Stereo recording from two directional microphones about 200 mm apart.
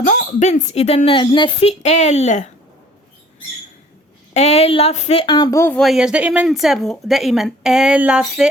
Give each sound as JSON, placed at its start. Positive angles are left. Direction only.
{"t": 0.0, "sound": "speech", "side_deg": 40}
{"t": 4.4, "sound": "speech", "side_deg": 30}